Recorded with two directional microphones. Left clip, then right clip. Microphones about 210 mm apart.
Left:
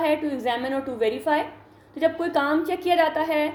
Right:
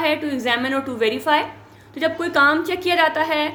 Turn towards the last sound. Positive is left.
turn(degrees=-20)  # may be behind; listen again after turning